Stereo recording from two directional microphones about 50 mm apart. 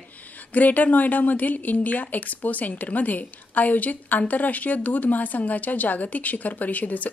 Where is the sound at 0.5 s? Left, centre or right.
Left.